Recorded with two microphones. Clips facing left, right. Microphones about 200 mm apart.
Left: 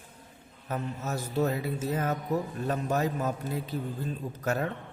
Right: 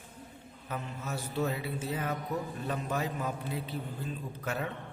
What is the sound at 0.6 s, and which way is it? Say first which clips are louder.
Speech: left 5 dB; 40° left (ahead or behind).